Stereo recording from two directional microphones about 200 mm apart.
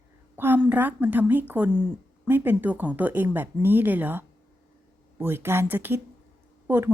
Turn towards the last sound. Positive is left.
turn(degrees=-10)  # may be behind; listen again after turning